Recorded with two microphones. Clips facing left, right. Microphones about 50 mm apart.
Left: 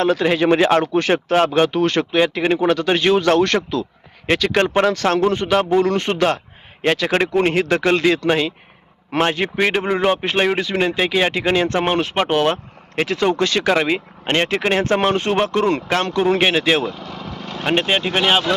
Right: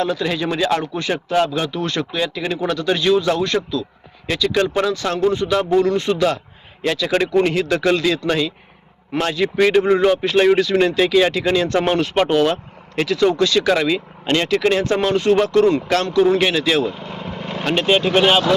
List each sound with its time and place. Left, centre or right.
0.0 s speech: left
3.2 s speech: left
5.9 s speech: left
9.6 s speech: left
12.3 s speech: left
16.9 s lawn mower: centre
17.7 s speech: left